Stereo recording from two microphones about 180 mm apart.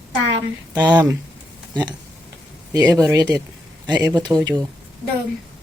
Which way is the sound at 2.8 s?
10° right (ahead or behind).